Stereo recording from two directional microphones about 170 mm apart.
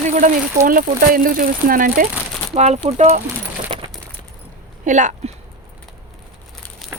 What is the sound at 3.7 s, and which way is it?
Coin, 35° right (ahead or behind).